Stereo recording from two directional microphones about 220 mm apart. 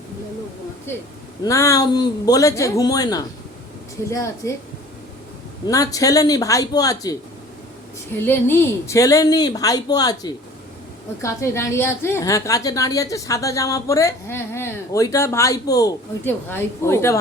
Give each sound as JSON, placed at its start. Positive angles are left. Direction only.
{"t": 0.9, "sound": "a woman's voice", "side_deg": 10}
{"t": 5.6, "sound": "a woman's voice", "side_deg": 15}